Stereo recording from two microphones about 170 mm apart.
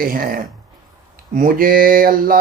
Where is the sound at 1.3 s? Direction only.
55° right (ahead or behind).